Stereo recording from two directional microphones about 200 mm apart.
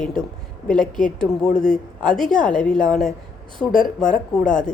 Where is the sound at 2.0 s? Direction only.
5° left (ahead or behind).